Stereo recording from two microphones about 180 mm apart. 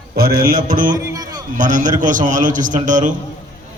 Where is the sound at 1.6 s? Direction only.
45° right (ahead or behind).